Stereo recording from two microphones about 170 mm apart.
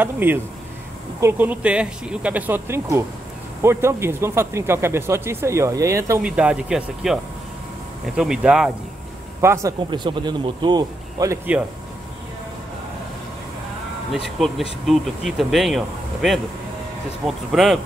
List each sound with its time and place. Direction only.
0.0 s speech: 10° right (ahead or behind)
6.2 s speech: 5° right (ahead or behind)
8.2 s speech: 5° right (ahead or behind)
9.4 s speech: 15° right (ahead or behind)
9.8 s speech: 25° right (ahead or behind)
14.4 s speech: centre (ahead or behind)
17.5 s speech: centre (ahead or behind)